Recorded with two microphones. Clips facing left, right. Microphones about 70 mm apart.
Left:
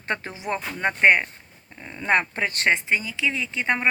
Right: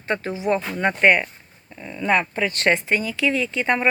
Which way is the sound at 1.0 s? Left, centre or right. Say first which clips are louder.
Even; centre.